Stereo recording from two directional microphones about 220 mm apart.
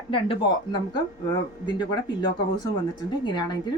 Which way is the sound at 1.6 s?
20° left (ahead or behind).